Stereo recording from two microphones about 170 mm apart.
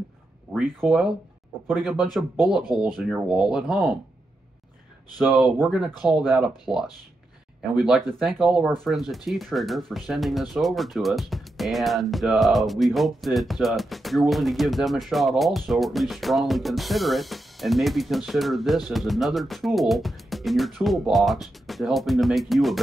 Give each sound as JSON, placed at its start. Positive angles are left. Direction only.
{"t": 0.5, "sound": "speech", "side_deg": -5}
{"t": 5.2, "sound": "speech", "side_deg": 0}
{"t": 7.8, "sound": "speech", "side_deg": -5}